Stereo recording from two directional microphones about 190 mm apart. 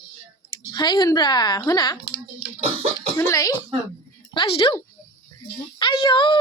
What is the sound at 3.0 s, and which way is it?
Speech, 15° left (ahead or behind).